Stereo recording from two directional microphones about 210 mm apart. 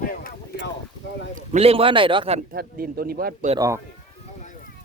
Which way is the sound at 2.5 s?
45° right (ahead or behind).